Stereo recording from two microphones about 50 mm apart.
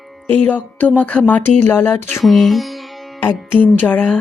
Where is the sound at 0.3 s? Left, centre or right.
Left.